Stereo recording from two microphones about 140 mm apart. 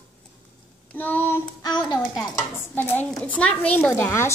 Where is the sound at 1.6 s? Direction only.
30° left (ahead or behind).